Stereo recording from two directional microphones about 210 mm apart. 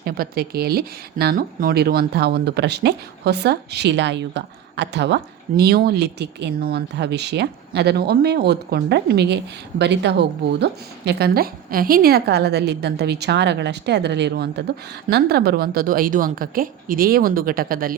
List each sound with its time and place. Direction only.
0.0 s speech: 45° right (ahead or behind)